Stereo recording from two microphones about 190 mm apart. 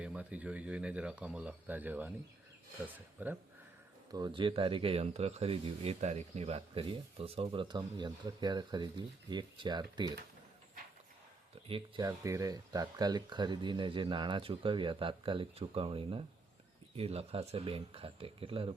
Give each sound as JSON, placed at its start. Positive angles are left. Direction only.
{"t": 0.0, "sound": "speech", "side_deg": -5}
{"t": 4.1, "sound": "speech", "side_deg": -25}
{"t": 12.0, "sound": "speech", "side_deg": -15}